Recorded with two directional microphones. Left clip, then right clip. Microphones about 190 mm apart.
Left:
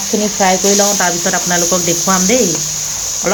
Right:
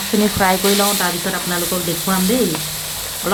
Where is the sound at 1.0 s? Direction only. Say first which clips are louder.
Left 6 dB; 15° left (ahead or behind).